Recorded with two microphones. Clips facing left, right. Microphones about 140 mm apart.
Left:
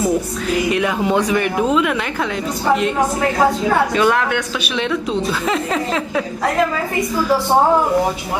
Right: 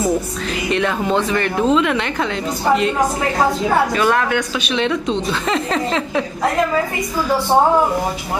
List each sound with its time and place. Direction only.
0.7 s speech: 10° left (ahead or behind)
3.9 s speech: centre (ahead or behind)